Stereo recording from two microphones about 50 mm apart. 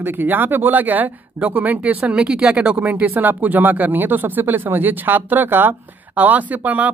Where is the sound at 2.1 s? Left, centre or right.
Centre.